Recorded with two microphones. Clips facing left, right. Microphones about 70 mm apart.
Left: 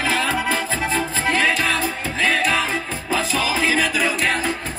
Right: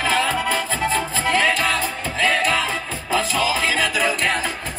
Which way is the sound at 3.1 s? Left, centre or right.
Centre.